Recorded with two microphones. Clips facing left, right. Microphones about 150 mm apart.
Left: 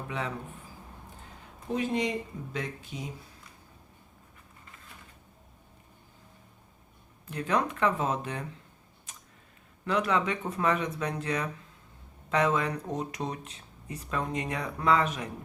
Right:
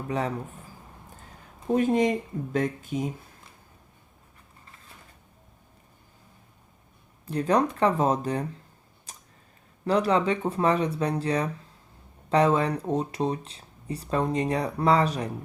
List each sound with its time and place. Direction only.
0.1 s speech: 40° right (ahead or behind)
1.7 s speech: 50° right (ahead or behind)
7.3 s speech: 35° right (ahead or behind)
9.1 s tick-tock: 35° right (ahead or behind)
9.8 s speech: 35° right (ahead or behind)